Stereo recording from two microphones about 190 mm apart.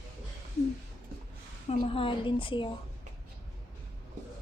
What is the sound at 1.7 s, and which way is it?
A woman's voice, 30° left (ahead or behind).